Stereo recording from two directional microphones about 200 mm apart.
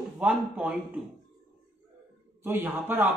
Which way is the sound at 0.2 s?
5° right (ahead or behind).